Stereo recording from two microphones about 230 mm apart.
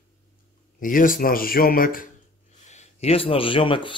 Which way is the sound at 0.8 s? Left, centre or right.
Left.